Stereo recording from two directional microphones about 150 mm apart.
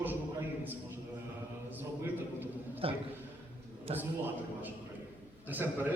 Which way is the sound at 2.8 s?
40° right (ahead or behind).